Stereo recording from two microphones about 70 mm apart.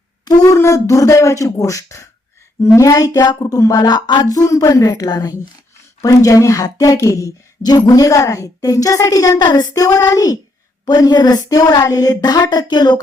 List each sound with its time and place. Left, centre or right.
0.3 s speech: left
0.6 s a woman's voice: left
6.0 s speech: left
7.6 s a woman's voice: left
10.8 s speech: left